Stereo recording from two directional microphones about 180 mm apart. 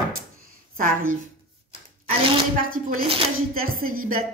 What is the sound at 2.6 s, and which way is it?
Speech, 50° right (ahead or behind).